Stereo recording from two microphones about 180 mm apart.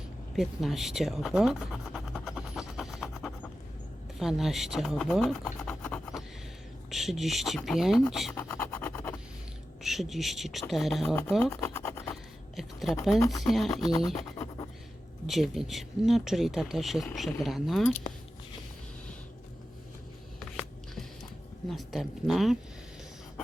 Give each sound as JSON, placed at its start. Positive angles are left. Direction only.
{"t": 0.3, "sound": "scratch", "side_deg": 0}
{"t": 4.2, "sound": "speech", "side_deg": 0}
{"t": 8.3, "sound": "a sound", "side_deg": 10}
{"t": 9.8, "sound": "speech", "side_deg": 0}
{"t": 11.6, "sound": "scratch", "side_deg": 15}
{"t": 12.1, "sound": "a sound", "side_deg": 0}
{"t": 13.1, "sound": "speech", "side_deg": 20}
{"t": 13.5, "sound": "speech", "side_deg": 0}
{"t": 15.3, "sound": "speech", "side_deg": 0}
{"t": 21.7, "sound": "speech", "side_deg": 0}